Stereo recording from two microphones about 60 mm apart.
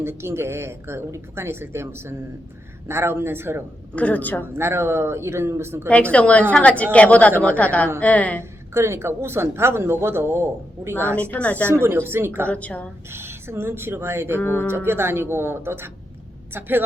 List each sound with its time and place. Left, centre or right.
0.0 s speech: right
3.9 s a woman's voice: left
4.5 s speech: right
5.9 s a woman's voice: left
8.7 s speech: right
11.2 s a woman's voice: left
11.7 s speech: right
12.5 s a woman's voice: left
13.1 s speech: right
14.3 s speech: left
14.8 s speech: right